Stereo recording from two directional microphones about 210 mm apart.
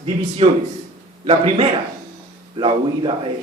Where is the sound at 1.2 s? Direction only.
25° right (ahead or behind).